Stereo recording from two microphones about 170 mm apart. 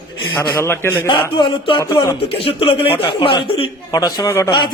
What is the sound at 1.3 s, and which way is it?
Speech, 30° left (ahead or behind).